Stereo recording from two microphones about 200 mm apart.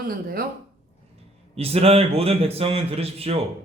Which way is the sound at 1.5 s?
30° right (ahead or behind).